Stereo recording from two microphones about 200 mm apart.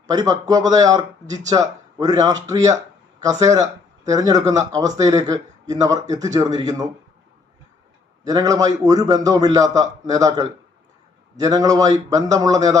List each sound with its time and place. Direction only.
0.1 s a man's voice: 20° right (ahead or behind)
8.3 s a man's voice: 20° right (ahead or behind)
11.4 s a man's voice: 20° right (ahead or behind)